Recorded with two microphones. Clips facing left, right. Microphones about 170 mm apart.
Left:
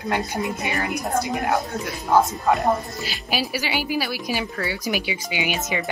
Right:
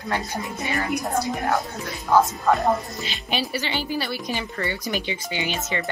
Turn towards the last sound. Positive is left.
turn(degrees=10)  # may be behind; listen again after turning